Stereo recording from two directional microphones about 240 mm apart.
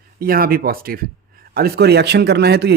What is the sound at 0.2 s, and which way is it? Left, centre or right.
A man's voice, right.